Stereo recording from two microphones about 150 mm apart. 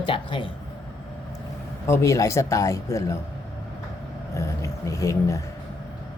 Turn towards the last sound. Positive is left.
turn(degrees=20)  # may be behind; listen again after turning